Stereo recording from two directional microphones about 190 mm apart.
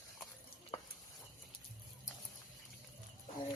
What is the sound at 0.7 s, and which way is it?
Stir, 30° left (ahead or behind).